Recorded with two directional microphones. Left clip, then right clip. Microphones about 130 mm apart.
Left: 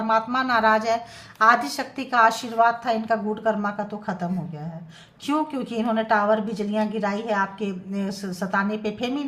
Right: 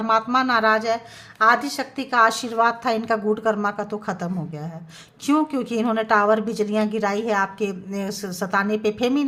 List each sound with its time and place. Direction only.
0.1 s a woman's voice: 25° right (ahead or behind)